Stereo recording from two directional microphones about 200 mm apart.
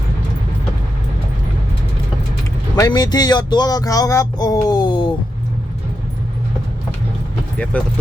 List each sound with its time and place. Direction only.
2.7 s speech: 20° left (ahead or behind)
7.7 s speech: 5° left (ahead or behind)